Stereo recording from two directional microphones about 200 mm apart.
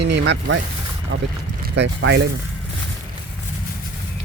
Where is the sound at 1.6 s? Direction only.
60° right (ahead or behind).